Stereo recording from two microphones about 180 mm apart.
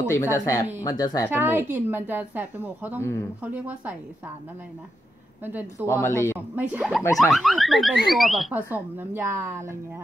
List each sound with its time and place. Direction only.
0.1 s speech: 15° left (ahead or behind)
1.3 s speech: 10° right (ahead or behind)
3.0 s speech: 15° left (ahead or behind)
3.5 s speech: 10° right (ahead or behind)
5.4 s speech: 10° right (ahead or behind)
5.8 s speech: 15° left (ahead or behind)
6.5 s speech: 10° right (ahead or behind)